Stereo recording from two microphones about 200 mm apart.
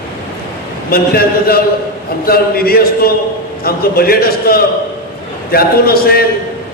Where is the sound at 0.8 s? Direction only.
50° left (ahead or behind).